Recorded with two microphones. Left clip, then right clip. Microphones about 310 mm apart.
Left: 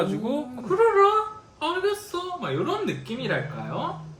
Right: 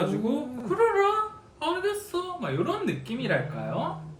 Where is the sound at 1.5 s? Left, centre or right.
Centre.